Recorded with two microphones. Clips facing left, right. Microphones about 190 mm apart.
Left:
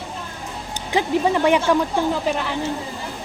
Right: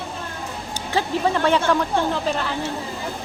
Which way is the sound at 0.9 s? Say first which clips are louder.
Left 3 dB; 15° left (ahead or behind).